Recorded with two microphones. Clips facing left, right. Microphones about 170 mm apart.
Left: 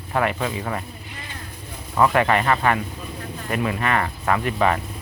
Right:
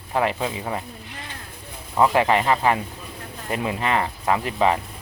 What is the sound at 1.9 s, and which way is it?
Speech, 20° right (ahead or behind).